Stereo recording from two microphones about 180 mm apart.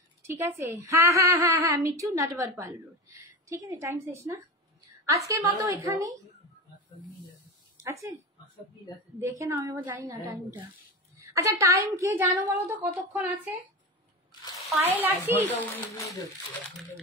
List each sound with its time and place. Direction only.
0.4 s a woman's voice: 15° right (ahead or behind)
7.8 s speech: 15° right (ahead or behind)
8.9 s a woman's voice: 25° left (ahead or behind)
9.2 s a woman's voice: 15° right (ahead or behind)
14.8 s a woman's voice: 10° right (ahead or behind)
15.5 s speech: 15° left (ahead or behind)